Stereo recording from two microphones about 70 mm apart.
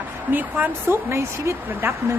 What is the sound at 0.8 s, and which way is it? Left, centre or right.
Speech, right.